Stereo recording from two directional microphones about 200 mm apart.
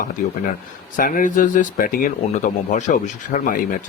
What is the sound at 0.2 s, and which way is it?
Speech, 40° left (ahead or behind).